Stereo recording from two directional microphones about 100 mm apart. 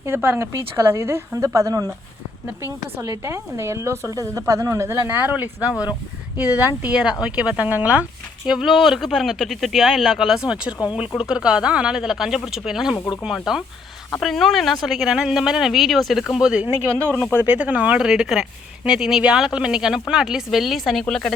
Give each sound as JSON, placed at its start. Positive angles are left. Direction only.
{"t": 0.0, "sound": "a woman's voice", "side_deg": -25}
{"t": 6.9, "sound": "speech", "side_deg": -10}
{"t": 8.4, "sound": "speech", "side_deg": -5}